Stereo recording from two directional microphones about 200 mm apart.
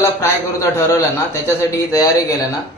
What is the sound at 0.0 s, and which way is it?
A man's voice, 15° left (ahead or behind).